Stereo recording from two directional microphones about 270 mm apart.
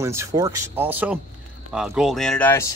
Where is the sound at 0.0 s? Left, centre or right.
Centre.